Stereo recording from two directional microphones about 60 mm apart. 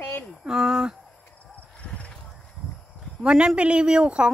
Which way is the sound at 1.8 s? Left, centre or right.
Left.